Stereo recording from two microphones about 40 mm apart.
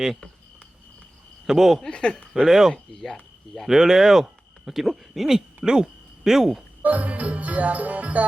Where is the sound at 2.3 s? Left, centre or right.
Centre.